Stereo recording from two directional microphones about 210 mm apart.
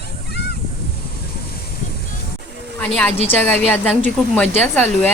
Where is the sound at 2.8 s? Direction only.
5° left (ahead or behind).